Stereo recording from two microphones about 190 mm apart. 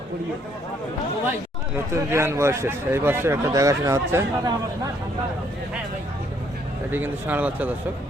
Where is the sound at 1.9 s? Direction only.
15° right (ahead or behind).